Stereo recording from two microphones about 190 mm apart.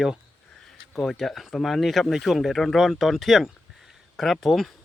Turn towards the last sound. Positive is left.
turn(degrees=0)  # may be behind; listen again after turning